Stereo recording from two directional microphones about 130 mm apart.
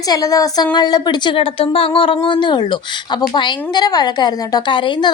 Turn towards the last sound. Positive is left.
turn(degrees=40)  # may be behind; listen again after turning